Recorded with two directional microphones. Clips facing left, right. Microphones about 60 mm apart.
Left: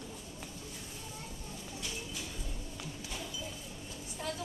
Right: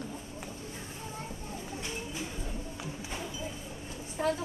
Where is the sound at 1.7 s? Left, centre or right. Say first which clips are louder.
Right 3 dB; right.